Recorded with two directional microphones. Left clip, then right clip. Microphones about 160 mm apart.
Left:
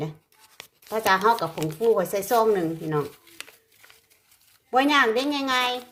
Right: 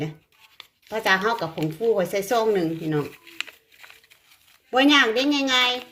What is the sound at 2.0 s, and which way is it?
Speech, centre (ahead or behind).